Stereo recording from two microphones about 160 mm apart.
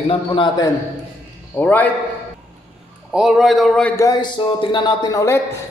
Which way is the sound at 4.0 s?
25° left (ahead or behind).